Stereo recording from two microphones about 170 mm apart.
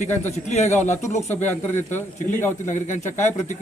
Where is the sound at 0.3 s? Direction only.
40° left (ahead or behind).